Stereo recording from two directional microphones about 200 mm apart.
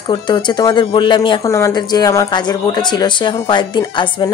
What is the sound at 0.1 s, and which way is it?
Speech, 20° left (ahead or behind).